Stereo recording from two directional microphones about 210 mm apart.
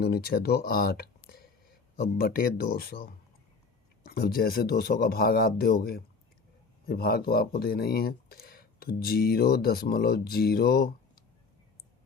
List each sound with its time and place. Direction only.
0.0 s speech: 50° left (ahead or behind)
4.1 s speech: 45° left (ahead or behind)
6.8 s speech: 45° left (ahead or behind)